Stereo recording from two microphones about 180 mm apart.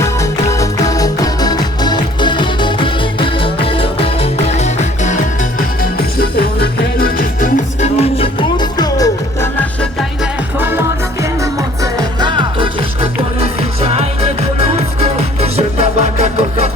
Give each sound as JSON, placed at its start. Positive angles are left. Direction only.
{"t": 0.0, "sound": "music", "side_deg": 15}
{"t": 10.6, "sound": "music", "side_deg": -10}
{"t": 11.8, "sound": "music", "side_deg": -25}